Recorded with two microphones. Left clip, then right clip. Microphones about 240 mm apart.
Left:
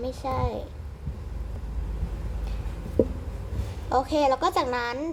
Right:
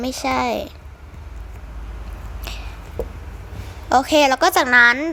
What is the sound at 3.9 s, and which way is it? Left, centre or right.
A woman's voice, right.